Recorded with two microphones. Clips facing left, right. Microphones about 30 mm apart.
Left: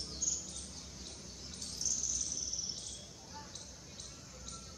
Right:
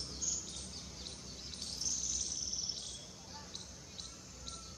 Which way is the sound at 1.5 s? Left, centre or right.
Right.